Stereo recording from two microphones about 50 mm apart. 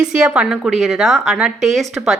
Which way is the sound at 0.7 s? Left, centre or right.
Centre.